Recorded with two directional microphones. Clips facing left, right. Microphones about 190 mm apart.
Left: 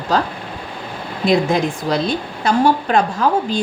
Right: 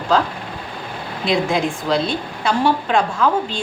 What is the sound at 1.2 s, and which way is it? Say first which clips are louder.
A woman's voice: left 3 dB; 40° left (ahead or behind).